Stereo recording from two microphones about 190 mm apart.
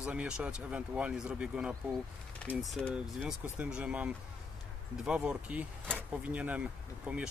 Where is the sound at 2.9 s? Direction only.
5° right (ahead or behind).